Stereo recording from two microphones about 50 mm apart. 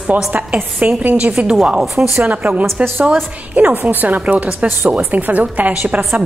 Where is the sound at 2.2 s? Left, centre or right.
Right.